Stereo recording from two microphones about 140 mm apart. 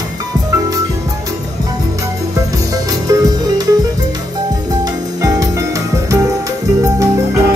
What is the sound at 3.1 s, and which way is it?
Music, 25° right (ahead or behind).